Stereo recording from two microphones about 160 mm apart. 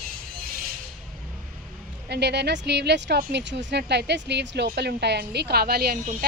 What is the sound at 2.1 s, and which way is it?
Speech, 90° right.